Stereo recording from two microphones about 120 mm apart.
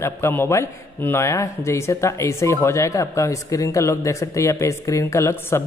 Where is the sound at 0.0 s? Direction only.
20° left (ahead or behind).